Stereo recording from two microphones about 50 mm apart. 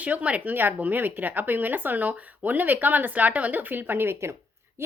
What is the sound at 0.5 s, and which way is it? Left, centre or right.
A woman's voice, right.